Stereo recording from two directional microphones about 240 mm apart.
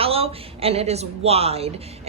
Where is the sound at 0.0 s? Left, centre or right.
Right.